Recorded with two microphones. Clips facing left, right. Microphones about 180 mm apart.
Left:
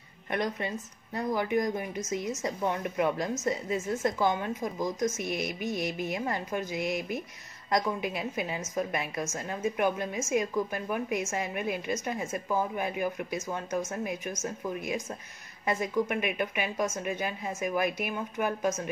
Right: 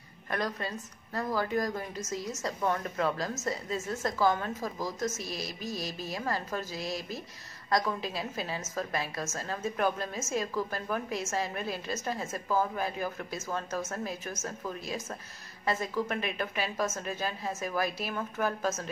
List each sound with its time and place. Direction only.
0.3 s a woman's voice: 20° left (ahead or behind)